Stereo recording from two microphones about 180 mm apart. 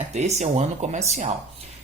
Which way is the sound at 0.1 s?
40° right (ahead or behind).